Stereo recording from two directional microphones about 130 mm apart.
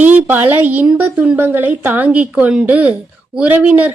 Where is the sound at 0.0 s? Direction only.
15° right (ahead or behind).